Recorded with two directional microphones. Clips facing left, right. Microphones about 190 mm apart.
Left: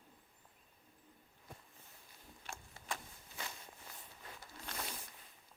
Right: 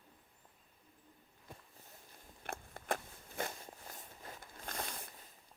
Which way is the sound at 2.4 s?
55° right (ahead or behind).